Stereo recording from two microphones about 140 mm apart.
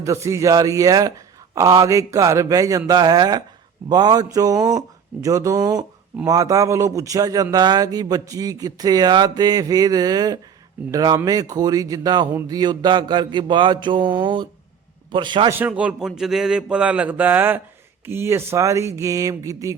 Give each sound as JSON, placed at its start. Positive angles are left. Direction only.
{"t": 0.0, "sound": "speech", "side_deg": -20}
{"t": 12.5, "sound": "mantra", "side_deg": -30}
{"t": 15.4, "sound": "a man's voice", "side_deg": -15}